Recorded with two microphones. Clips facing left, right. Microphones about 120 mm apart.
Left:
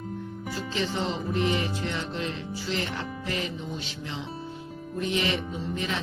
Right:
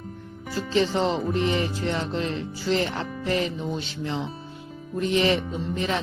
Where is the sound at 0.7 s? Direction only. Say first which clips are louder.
Right 8 dB; 35° right (ahead or behind).